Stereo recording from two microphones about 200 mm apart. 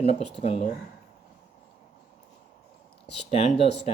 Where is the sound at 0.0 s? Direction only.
30° left (ahead or behind).